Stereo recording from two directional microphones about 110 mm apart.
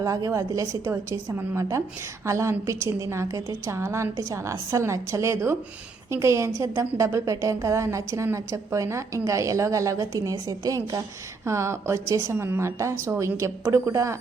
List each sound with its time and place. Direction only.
0.0 s a woman's voice: 30° right (ahead or behind)